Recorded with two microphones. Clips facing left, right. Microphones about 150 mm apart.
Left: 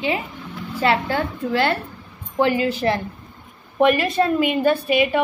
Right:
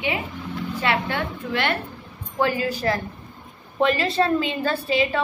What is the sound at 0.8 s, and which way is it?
A woman's voice, 30° left (ahead or behind).